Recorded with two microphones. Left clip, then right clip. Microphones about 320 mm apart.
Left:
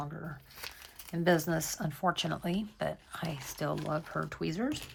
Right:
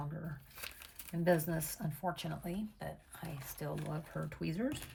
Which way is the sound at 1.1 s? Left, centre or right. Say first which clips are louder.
Left 4 dB; centre.